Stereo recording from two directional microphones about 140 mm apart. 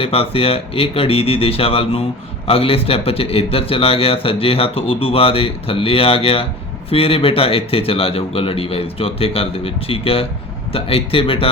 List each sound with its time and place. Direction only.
0.0 s a man's voice: 45° left (ahead or behind)